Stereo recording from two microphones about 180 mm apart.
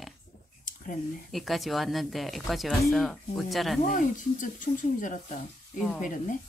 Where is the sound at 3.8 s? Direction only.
45° left (ahead or behind).